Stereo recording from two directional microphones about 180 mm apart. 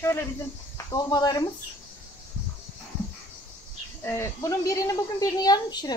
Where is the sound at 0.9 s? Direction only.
20° left (ahead or behind).